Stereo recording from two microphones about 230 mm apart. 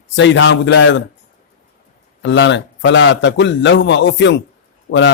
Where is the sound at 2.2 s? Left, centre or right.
Left.